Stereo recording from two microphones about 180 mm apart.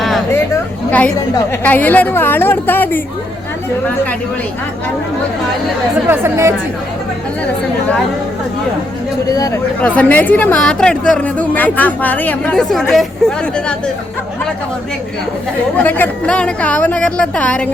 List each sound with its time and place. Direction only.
0.0 s a sound: centre (ahead or behind)
0.9 s a woman's voice: 10° left (ahead or behind)
6.1 s speech: 15° right (ahead or behind)
7.4 s a woman's voice: 5° left (ahead or behind)
9.3 s speech: 20° left (ahead or behind)
9.8 s a woman's voice: 10° left (ahead or behind)
15.8 s a woman's voice: 10° left (ahead or behind)